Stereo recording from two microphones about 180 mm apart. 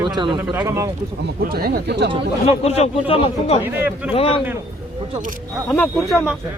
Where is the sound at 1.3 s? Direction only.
55° right (ahead or behind).